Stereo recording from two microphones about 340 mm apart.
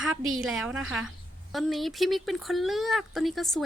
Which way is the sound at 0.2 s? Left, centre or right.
Right.